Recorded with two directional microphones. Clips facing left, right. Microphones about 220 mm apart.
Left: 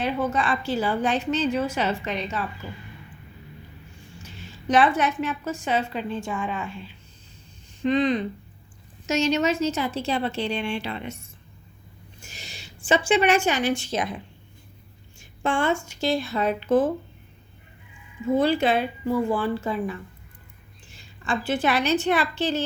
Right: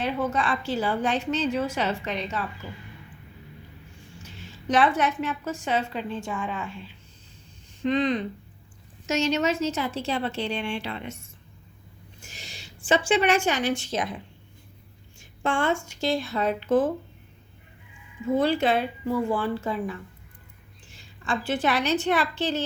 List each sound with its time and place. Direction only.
0.0 s a woman's voice: 10° left (ahead or behind)
4.7 s a woman's voice: 10° left (ahead or behind)
12.2 s a woman's voice: 10° left (ahead or behind)
15.4 s speech: 5° left (ahead or behind)
18.3 s a woman's voice: 10° left (ahead or behind)
21.2 s a woman's voice: 5° left (ahead or behind)